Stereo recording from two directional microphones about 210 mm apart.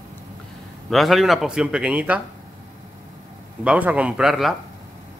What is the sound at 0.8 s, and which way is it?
Speech, centre (ahead or behind).